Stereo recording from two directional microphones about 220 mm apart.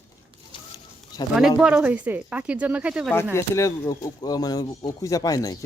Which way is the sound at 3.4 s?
15° left (ahead or behind).